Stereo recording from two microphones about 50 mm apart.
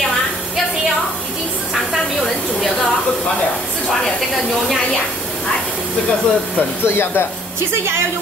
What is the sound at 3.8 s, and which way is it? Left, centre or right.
Speech, centre.